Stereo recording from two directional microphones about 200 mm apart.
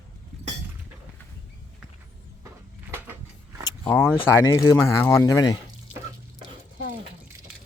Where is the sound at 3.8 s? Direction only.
10° left (ahead or behind).